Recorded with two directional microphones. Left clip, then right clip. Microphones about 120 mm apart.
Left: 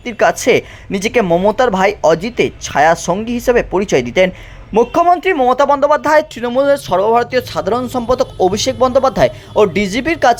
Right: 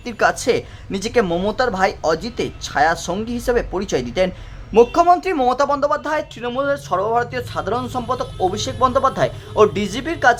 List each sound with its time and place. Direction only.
0.2 s speech: 30° left (ahead or behind)
1.2 s speech: 5° left (ahead or behind)
1.5 s speech: 35° left (ahead or behind)